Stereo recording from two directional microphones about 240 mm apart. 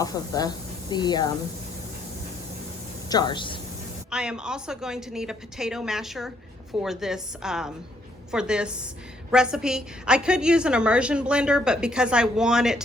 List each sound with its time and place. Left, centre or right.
0.0 s speech: centre
3.1 s speech: centre
4.1 s a woman's voice: centre